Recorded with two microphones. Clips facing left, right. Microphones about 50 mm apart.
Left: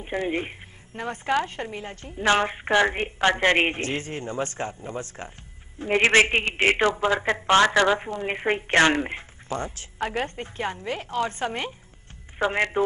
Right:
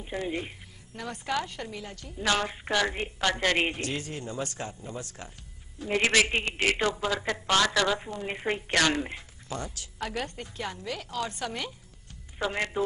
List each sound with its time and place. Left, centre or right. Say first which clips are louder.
0.0 s a man's voice: left 5 dB; left